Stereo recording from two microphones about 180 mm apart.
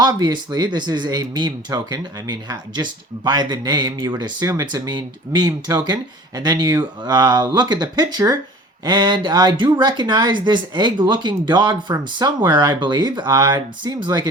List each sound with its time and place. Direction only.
0.0 s speech: 20° right (ahead or behind)